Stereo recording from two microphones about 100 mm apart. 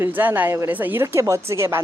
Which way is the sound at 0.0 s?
20° right (ahead or behind).